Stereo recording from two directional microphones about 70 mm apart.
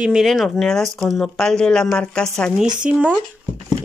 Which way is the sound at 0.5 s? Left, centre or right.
Centre.